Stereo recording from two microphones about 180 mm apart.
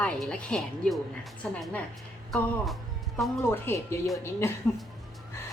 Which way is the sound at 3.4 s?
15° left (ahead or behind).